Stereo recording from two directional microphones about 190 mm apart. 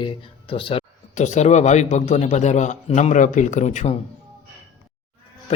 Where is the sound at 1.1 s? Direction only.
40° left (ahead or behind).